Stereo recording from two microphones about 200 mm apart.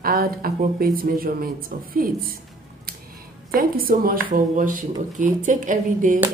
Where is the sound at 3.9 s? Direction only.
45° right (ahead or behind).